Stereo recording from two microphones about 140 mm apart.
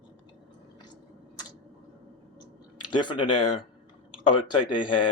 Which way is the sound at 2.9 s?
35° left (ahead or behind).